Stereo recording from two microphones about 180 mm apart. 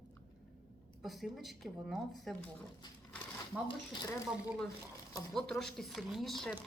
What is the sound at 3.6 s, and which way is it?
Speech, 25° left (ahead or behind).